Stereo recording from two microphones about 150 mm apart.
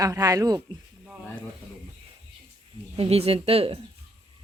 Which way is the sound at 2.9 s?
40° right (ahead or behind).